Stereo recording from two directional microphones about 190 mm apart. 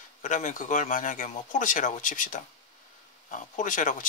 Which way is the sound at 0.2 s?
40° left (ahead or behind).